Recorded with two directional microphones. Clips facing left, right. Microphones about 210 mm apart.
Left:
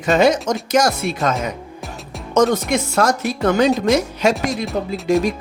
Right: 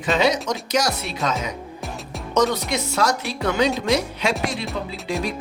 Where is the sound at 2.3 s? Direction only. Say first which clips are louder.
Left 5 dB; 50° left (ahead or behind).